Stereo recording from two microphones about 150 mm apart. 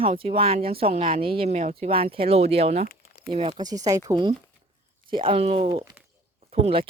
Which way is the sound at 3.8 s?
25° right (ahead or behind).